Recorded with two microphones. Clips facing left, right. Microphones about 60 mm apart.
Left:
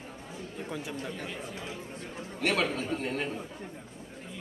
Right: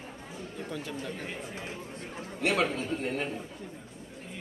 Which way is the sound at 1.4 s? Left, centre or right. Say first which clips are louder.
Even; right.